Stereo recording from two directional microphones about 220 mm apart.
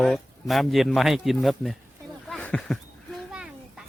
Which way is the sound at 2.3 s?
5° left (ahead or behind).